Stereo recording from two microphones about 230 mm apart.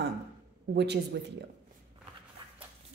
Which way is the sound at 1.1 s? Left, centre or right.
Right.